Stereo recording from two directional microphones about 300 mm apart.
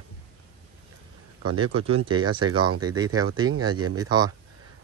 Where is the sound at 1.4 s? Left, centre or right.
Centre.